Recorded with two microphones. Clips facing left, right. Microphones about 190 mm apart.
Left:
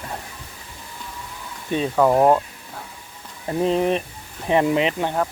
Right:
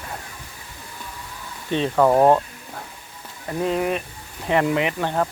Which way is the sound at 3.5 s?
25° left (ahead or behind).